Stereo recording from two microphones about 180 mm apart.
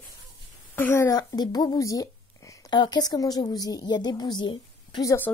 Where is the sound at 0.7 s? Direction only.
15° left (ahead or behind).